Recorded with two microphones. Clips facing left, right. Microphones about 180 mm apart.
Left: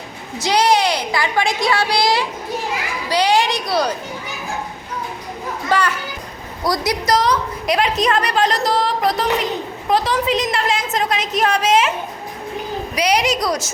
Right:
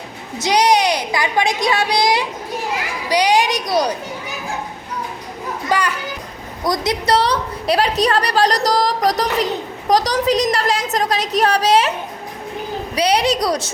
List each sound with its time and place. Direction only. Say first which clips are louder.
0.3 s a woman's voice: right 1 dB; 20° right (ahead or behind)
5.7 s a child's voice: left 1 dB; 15° right (ahead or behind)
6.7 s a woman's voice: right 1 dB; 25° right (ahead or behind)
13.0 s a woman's voice: right 2 dB; 30° right (ahead or behind)